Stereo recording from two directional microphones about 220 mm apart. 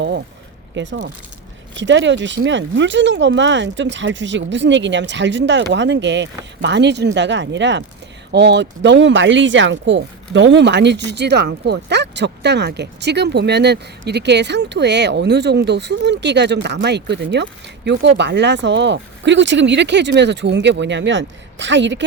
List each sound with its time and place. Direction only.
0.7 s speech: 55° right (ahead or behind)